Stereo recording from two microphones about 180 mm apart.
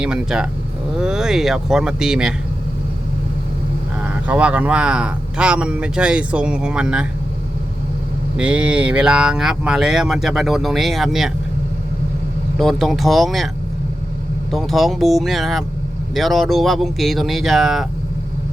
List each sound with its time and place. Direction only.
0.0 s speech: 5° right (ahead or behind)
4.0 s speech: 10° right (ahead or behind)
8.4 s speech: 5° right (ahead or behind)
12.5 s speech: centre (ahead or behind)
14.5 s speech: centre (ahead or behind)